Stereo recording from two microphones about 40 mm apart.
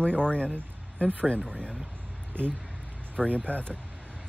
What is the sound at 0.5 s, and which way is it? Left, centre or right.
Speech, right.